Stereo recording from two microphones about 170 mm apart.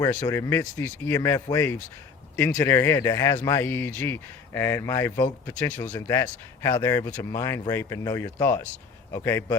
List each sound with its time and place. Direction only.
0.0 s speech: 20° left (ahead or behind)